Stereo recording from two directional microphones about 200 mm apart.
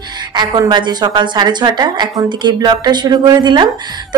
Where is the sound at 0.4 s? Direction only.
20° right (ahead or behind).